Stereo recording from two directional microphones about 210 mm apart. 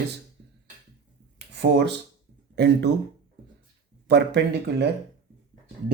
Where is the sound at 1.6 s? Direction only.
55° right (ahead or behind).